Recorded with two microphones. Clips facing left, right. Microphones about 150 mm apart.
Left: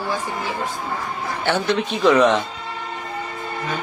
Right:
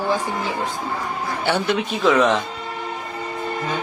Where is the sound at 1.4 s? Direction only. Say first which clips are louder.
Left 1 dB; 10° right (ahead or behind).